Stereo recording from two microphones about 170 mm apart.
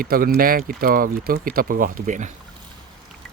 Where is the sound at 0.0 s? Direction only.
60° right (ahead or behind).